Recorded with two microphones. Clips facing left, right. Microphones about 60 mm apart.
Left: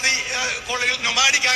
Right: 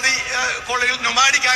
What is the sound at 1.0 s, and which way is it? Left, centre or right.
Speech, right.